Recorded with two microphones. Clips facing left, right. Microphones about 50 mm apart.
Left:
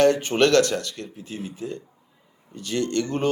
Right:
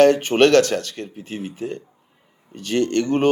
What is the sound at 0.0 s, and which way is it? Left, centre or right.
Speech, right.